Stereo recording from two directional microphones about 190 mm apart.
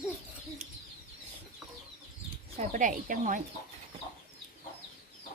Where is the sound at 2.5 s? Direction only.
40° right (ahead or behind).